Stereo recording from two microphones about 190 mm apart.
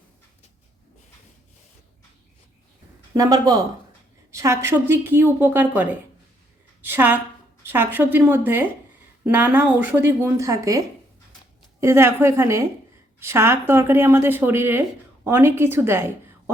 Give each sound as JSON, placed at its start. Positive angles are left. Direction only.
{"t": 3.2, "sound": "a woman's voice", "side_deg": -20}